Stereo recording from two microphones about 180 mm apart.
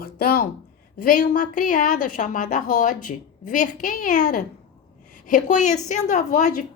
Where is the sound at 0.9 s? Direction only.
50° left (ahead or behind).